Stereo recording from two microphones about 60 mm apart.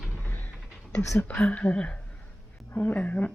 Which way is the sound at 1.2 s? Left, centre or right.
Left.